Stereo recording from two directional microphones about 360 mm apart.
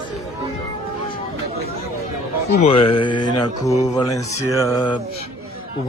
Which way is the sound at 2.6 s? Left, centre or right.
Centre.